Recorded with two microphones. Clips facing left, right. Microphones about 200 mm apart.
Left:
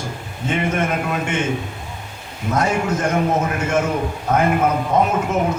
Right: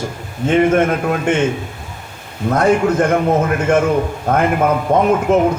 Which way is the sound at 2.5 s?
55° right (ahead or behind).